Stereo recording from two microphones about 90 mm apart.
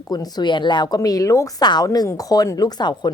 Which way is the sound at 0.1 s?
50° left (ahead or behind).